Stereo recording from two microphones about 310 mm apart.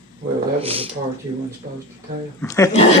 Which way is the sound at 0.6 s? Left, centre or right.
Centre.